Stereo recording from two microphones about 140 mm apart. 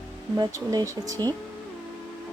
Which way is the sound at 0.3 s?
25° right (ahead or behind).